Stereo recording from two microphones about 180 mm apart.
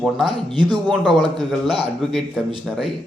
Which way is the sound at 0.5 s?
25° right (ahead or behind).